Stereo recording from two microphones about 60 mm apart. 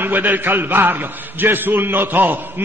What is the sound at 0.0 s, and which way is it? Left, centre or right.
A man's voice, right.